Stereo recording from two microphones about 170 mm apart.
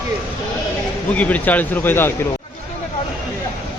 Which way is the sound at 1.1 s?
10° left (ahead or behind).